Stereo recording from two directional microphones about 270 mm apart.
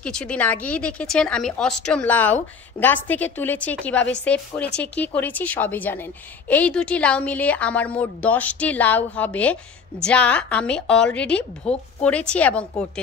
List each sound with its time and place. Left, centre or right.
0.0 s a woman's voice: centre